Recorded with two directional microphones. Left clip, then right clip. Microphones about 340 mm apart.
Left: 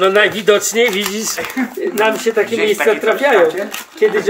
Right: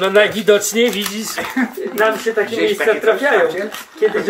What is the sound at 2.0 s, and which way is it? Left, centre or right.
Speech, left.